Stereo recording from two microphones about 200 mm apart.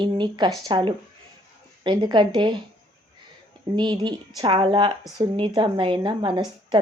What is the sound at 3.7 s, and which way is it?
Speech, 20° right (ahead or behind).